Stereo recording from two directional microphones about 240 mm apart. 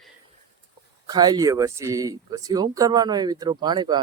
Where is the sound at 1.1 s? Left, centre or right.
Centre.